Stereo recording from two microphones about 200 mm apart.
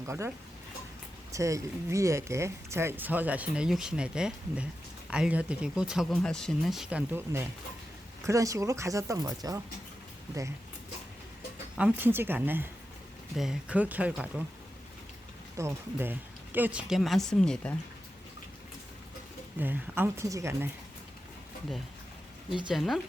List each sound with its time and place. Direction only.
0.0 s speech: 15° right (ahead or behind)
11.8 s speech: 10° right (ahead or behind)
15.5 s speech: 10° right (ahead or behind); by 17.7 s 5° left (ahead or behind)
19.5 s speech: 10° right (ahead or behind)
22.7 s speech: centre (ahead or behind)